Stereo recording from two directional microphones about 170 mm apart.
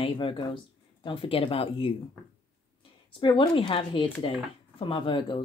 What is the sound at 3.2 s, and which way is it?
Speech, 30° left (ahead or behind).